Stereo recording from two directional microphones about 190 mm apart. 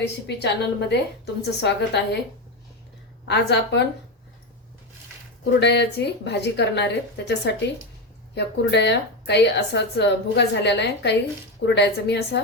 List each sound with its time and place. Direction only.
0.4 s a woman's voice: 60° left (ahead or behind)
3.2 s a woman's voice: 65° left (ahead or behind)
5.5 s a woman's voice: 65° left (ahead or behind)